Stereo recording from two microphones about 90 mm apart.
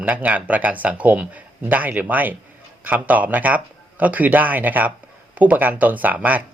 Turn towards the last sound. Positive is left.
turn(degrees=-15)  # may be behind; listen again after turning